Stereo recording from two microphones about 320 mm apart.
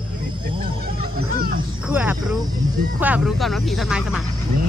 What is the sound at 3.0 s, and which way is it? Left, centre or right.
Snake, centre.